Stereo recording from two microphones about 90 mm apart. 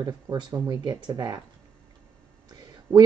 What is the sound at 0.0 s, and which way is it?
Speech, 45° right (ahead or behind).